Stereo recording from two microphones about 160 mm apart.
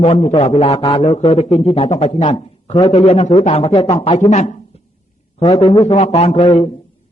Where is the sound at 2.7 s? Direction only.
20° left (ahead or behind).